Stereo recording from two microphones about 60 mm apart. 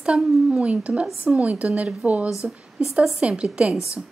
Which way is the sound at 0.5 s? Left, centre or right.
Centre.